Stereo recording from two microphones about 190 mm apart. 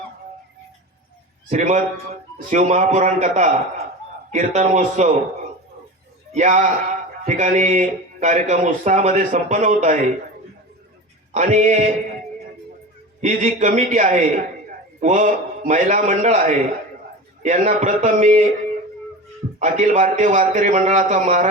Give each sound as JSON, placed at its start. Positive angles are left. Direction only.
{"t": 1.5, "sound": "speech", "side_deg": -40}
{"t": 6.3, "sound": "speech", "side_deg": -40}
{"t": 11.3, "sound": "speech", "side_deg": -40}
{"t": 13.2, "sound": "speech", "side_deg": -40}
{"t": 19.5, "sound": "speech", "side_deg": -40}